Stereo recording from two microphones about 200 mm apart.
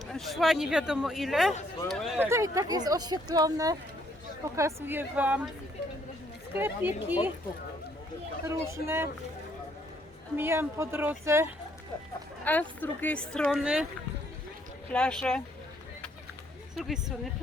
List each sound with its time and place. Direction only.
0.1 s speech: centre (ahead or behind)
2.1 s speech: 10° right (ahead or behind)
6.5 s speech: 10° right (ahead or behind)
8.4 s speech: 15° right (ahead or behind)
10.3 s speech: 10° right (ahead or behind)
12.5 s speech: 10° left (ahead or behind)
14.8 s speech: 5° left (ahead or behind)
16.7 s speech: centre (ahead or behind)